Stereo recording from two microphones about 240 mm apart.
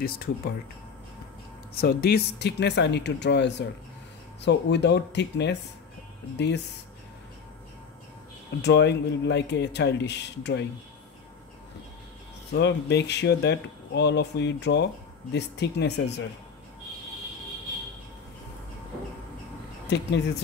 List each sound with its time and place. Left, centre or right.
1.8 s speech: left
8.6 s speech: left
12.5 s speech: left
19.9 s speech: left